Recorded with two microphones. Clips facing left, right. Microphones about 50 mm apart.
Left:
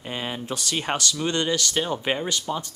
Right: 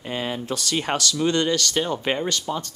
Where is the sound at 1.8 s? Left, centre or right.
Centre.